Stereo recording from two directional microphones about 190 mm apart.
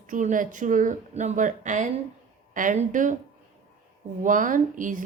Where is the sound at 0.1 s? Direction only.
45° right (ahead or behind).